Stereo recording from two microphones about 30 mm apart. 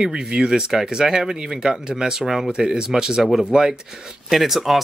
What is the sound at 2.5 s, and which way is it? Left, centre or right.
Speech, right.